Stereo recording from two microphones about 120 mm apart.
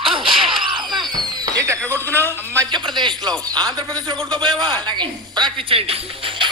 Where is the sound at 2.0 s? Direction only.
15° left (ahead or behind).